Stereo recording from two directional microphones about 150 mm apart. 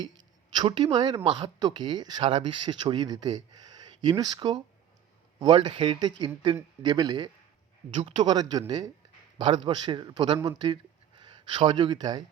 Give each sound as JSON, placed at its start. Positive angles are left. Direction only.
{"t": 0.0, "sound": "a man's voice", "side_deg": -30}